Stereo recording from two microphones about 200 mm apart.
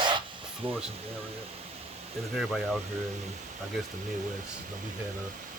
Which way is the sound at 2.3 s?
Centre (ahead or behind).